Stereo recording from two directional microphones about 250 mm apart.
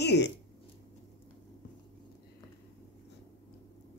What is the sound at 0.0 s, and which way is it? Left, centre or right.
Speech, left.